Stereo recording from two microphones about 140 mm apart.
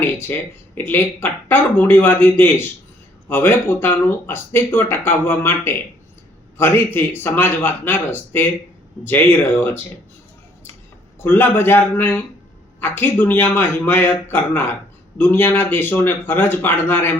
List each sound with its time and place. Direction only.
0.0 s speech: 15° left (ahead or behind)
11.2 s speech: 15° left (ahead or behind)